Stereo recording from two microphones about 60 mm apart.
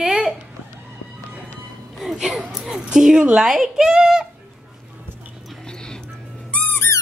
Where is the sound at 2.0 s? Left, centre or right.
Centre.